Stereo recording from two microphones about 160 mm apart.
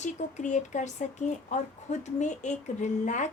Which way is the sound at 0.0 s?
45° left (ahead or behind).